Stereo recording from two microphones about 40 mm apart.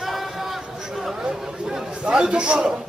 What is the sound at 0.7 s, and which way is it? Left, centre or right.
Chatter, centre.